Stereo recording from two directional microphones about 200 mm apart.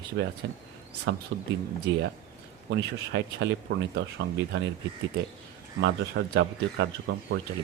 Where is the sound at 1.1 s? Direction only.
65° right (ahead or behind).